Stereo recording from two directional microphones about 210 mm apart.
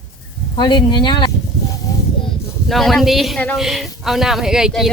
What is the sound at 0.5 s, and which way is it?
Speech, 20° left (ahead or behind).